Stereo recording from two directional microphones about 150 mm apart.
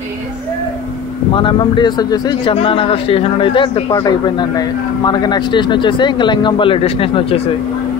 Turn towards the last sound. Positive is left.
turn(degrees=40)  # may be behind; listen again after turning